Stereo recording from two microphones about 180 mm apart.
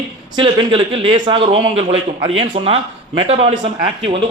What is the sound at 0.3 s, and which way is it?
Speech, 30° right (ahead or behind).